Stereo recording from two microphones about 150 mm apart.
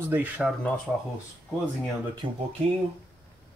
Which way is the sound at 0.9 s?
5° left (ahead or behind).